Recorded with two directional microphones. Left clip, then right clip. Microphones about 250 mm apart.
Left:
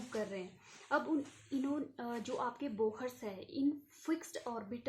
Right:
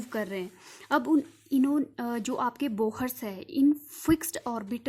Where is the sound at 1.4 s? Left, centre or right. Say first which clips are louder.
Right 12 dB; right.